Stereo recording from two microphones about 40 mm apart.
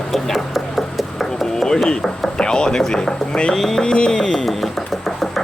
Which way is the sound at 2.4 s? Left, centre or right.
Left.